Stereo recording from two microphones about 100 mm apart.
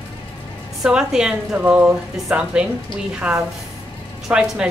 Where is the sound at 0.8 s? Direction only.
10° right (ahead or behind).